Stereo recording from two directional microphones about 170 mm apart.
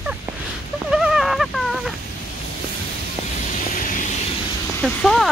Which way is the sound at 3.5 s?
50° left (ahead or behind).